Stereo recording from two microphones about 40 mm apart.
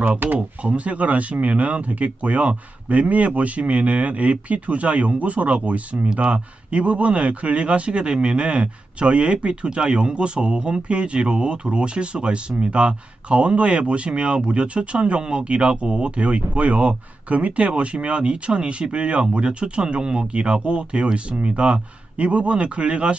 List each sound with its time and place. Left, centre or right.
0.7 s a man's voice: right